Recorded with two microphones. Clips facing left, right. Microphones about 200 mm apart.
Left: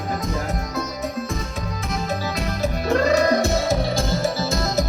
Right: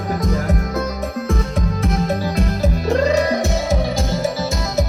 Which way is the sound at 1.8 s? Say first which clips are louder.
Right 5 dB; 55° right (ahead or behind).